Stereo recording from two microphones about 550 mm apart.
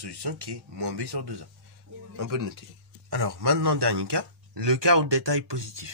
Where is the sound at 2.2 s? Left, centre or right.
Right.